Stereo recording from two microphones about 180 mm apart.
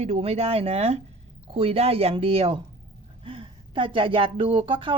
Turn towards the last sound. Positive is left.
turn(degrees=-30)  # may be behind; listen again after turning